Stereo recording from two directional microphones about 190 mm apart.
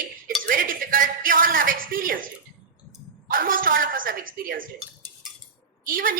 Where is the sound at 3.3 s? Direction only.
50° right (ahead or behind).